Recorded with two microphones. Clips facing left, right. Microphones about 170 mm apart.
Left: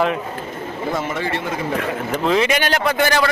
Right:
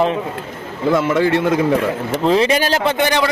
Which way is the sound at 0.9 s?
85° right.